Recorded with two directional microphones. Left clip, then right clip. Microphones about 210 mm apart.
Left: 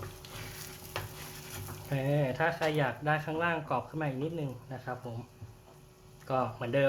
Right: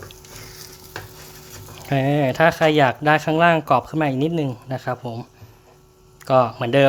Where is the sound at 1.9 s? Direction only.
50° right (ahead or behind).